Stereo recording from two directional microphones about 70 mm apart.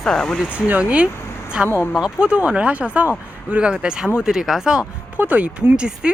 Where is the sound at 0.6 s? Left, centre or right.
Centre.